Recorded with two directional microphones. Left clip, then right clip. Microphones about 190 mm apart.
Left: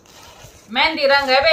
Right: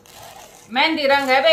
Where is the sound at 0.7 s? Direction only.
Centre (ahead or behind).